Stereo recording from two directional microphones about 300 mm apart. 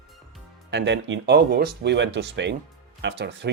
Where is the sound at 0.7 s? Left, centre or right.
Right.